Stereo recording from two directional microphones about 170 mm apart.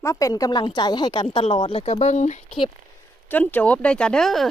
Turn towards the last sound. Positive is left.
turn(degrees=0)  # may be behind; listen again after turning